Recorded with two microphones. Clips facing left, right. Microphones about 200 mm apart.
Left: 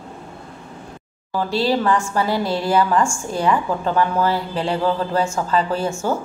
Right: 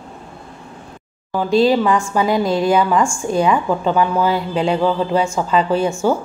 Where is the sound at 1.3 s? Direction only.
20° right (ahead or behind).